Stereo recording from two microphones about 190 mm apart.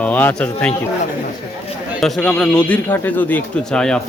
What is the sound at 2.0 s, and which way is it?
Speech, centre (ahead or behind).